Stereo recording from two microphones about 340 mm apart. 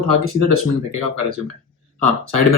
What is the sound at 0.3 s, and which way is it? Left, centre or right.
Speech, right.